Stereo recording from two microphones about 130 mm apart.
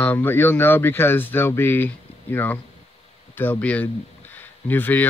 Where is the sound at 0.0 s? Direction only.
15° left (ahead or behind).